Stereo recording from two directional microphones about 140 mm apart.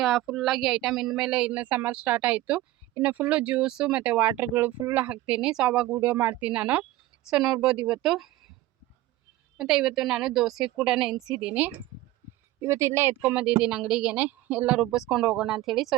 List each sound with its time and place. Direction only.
0.0 s a woman's voice: centre (ahead or behind)
9.6 s a woman's voice: 5° right (ahead or behind)